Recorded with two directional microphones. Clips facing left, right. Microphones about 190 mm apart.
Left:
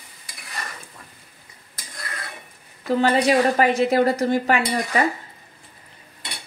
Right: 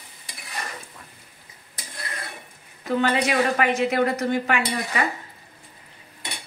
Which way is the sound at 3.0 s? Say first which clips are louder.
Left 4 dB; 35° left (ahead or behind).